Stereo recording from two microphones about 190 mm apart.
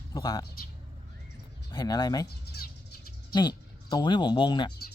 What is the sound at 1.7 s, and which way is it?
Speech, 20° left (ahead or behind).